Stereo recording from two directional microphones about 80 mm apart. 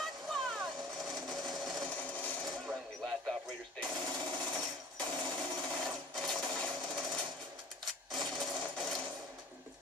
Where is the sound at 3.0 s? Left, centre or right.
Centre.